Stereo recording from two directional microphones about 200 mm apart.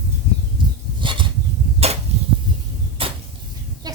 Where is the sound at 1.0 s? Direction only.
25° right (ahead or behind).